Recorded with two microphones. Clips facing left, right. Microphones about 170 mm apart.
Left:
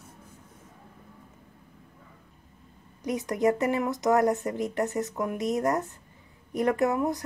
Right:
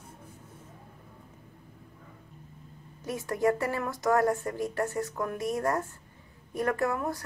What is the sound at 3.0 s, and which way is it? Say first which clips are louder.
Speech: left 2 dB; 20° left (ahead or behind).